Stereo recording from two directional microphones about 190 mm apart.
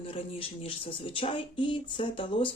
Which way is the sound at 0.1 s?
30° left (ahead or behind).